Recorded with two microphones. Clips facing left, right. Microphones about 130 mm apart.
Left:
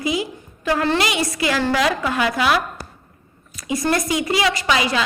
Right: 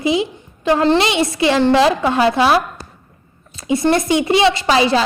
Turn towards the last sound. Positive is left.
turn(degrees=-30)  # may be behind; listen again after turning